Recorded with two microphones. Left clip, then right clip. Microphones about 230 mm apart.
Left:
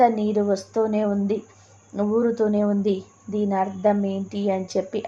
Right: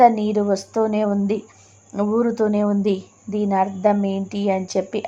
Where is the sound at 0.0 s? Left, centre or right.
Centre.